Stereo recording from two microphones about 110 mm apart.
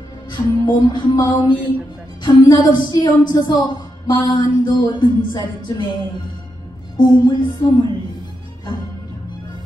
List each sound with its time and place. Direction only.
0.3 s speech: 45° left (ahead or behind)